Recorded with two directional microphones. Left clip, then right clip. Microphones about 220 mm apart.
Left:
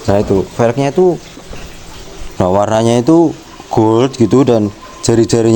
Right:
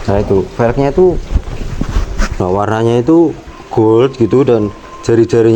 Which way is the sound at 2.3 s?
55° left (ahead or behind).